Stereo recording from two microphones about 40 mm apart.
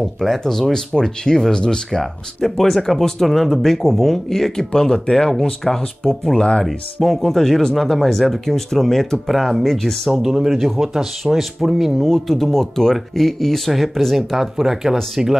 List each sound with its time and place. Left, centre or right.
0.4 s speech: centre
1.9 s speech: centre
12.1 s speech: centre